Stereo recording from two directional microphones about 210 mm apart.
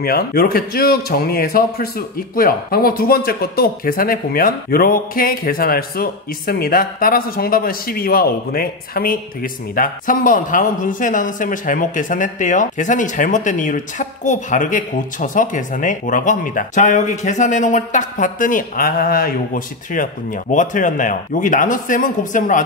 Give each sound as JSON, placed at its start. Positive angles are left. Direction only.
{"t": 0.0, "sound": "a man's voice", "side_deg": 45}